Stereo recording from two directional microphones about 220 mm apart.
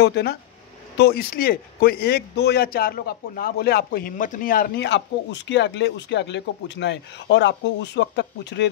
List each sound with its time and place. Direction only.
0.0 s speech: 45° left (ahead or behind)